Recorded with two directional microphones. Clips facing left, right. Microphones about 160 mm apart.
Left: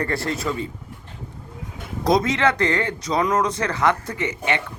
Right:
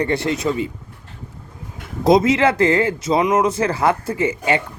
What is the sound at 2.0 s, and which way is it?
A man's voice, 25° right (ahead or behind).